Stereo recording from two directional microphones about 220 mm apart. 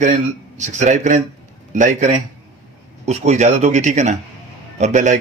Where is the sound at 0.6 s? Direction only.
35° right (ahead or behind).